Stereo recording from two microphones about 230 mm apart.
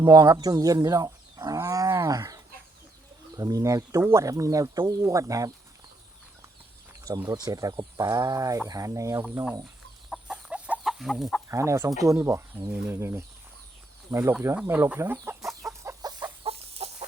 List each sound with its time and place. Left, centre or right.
0.0 s roaring cats: centre
3.3 s speech: centre
7.0 s speech: centre
10.1 s chicken: centre
11.4 s speech: centre
15.8 s chicken: centre